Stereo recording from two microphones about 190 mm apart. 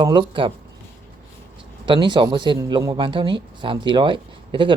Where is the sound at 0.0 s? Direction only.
25° right (ahead or behind).